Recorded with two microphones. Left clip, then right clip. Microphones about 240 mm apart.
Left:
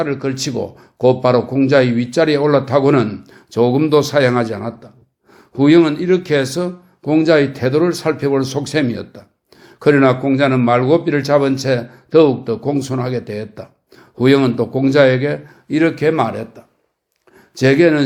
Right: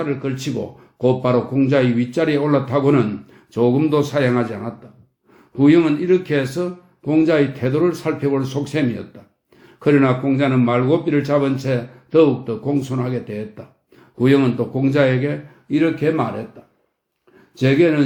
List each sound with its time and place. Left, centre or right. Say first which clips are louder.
0.0 s a man's voice: left 4 dB; left
17.6 s a man's voice: left 4 dB; left